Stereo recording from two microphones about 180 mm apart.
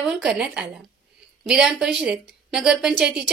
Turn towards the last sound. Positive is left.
turn(degrees=-5)  # may be behind; listen again after turning